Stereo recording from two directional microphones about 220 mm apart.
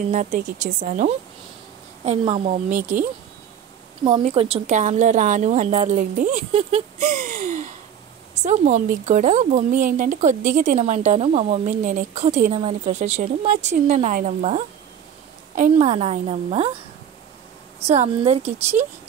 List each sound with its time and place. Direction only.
0.1 s speech: 35° right (ahead or behind)
4.0 s a woman's voice: 25° right (ahead or behind)
17.8 s a woman's voice: 30° right (ahead or behind)